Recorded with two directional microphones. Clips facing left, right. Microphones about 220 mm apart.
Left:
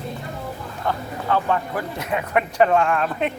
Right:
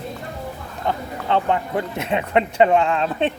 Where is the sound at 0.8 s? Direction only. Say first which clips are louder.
Right 1 dB; 20° right (ahead or behind).